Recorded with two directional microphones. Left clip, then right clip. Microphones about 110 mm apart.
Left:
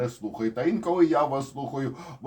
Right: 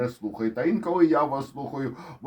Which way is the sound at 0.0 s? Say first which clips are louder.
Right 1 dB; 40° right (ahead or behind).